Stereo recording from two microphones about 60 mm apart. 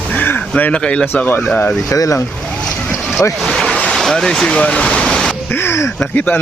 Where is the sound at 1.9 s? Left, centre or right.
Left.